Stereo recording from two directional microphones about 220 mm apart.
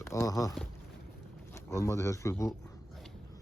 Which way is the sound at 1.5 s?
15° left (ahead or behind).